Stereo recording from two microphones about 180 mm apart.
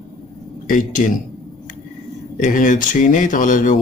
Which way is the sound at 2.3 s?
45° left (ahead or behind).